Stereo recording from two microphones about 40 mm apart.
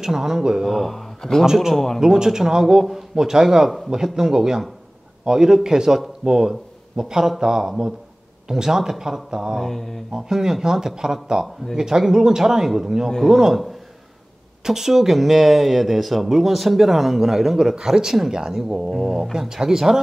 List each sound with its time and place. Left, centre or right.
0.0 s speech: centre
0.7 s speech: centre
1.4 s speech: centre
9.6 s a man's voice: centre
10.1 s a man's voice: centre
18.9 s a man's voice: centre
19.5 s speech: centre